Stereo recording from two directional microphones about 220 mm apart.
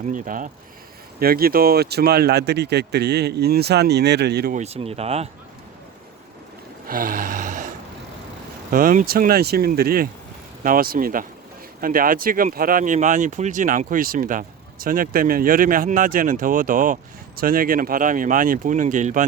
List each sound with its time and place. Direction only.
0.0 s speech: 35° right (ahead or behind)
4.5 s speech: 30° right (ahead or behind)
6.8 s a sound: 40° right (ahead or behind)
8.7 s speech: 40° right (ahead or behind)